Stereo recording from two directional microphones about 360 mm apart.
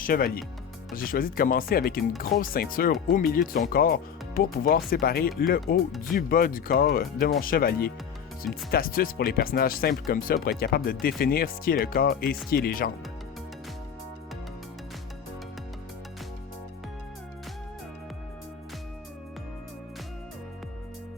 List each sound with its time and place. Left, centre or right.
0.0 s speech: left